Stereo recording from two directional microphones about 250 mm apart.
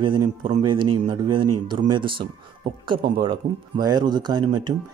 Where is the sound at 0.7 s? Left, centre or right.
Centre.